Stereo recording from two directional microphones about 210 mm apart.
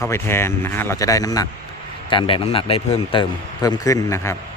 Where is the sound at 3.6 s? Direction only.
15° left (ahead or behind).